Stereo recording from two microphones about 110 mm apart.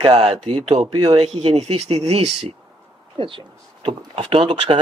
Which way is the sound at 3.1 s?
50° right (ahead or behind).